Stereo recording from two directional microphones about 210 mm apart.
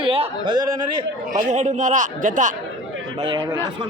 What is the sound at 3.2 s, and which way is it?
Speech, 25° right (ahead or behind).